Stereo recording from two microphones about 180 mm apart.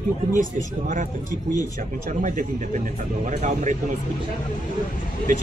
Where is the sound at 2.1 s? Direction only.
45° right (ahead or behind).